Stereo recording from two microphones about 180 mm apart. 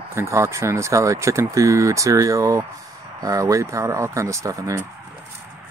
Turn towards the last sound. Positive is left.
turn(degrees=-15)  # may be behind; listen again after turning